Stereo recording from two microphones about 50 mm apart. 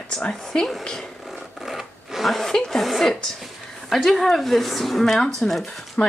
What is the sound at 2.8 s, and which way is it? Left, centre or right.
A woman's voice, centre.